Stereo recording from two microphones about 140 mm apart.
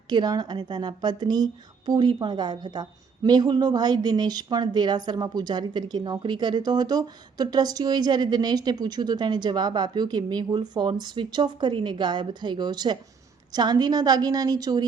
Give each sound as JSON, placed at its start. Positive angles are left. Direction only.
{"t": 0.1, "sound": "a woman's voice", "side_deg": -30}